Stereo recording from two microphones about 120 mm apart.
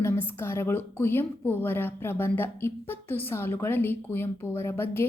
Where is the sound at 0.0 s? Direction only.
20° left (ahead or behind).